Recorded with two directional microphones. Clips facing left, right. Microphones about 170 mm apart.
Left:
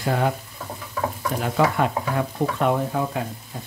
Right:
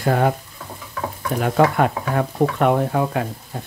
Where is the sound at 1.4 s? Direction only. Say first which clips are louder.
Right 4 dB; 55° right (ahead or behind).